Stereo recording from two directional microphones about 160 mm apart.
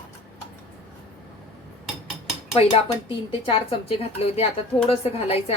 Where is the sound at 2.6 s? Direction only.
35° left (ahead or behind).